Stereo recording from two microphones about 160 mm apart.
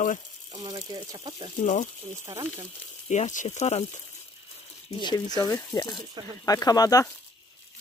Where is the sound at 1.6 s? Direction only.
50° left (ahead or behind).